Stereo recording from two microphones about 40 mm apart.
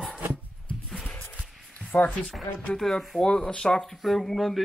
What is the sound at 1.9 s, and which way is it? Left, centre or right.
Speech, left.